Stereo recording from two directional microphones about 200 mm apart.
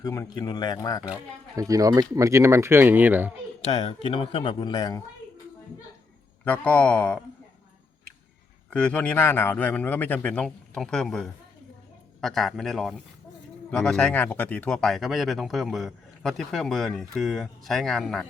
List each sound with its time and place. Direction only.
0.0 s speech: 15° left (ahead or behind)
1.5 s speech: 15° right (ahead or behind)
3.6 s speech: 30° left (ahead or behind)
6.4 s a man's voice: 5° left (ahead or behind)
8.7 s a man's voice: 5° left (ahead or behind)